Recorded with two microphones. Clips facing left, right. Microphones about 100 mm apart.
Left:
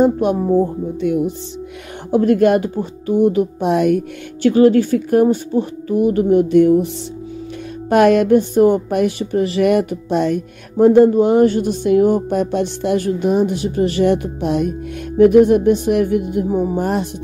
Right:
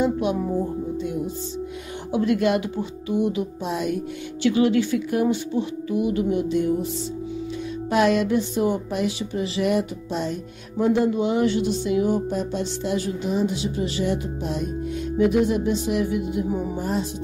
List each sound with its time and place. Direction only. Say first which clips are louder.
0.0 s speech: left 7 dB; 45° left (ahead or behind)
1.0 s speech: left 15 dB; 65° left (ahead or behind)
2.1 s speech: left 8 dB; 45° left (ahead or behind)
7.9 s speech: left 8 dB; 55° left (ahead or behind)
15.1 s speech: left 10 dB; 55° left (ahead or behind)
16.4 s speech: left 8 dB; 35° left (ahead or behind)
16.7 s speech: left 7 dB; 65° left (ahead or behind)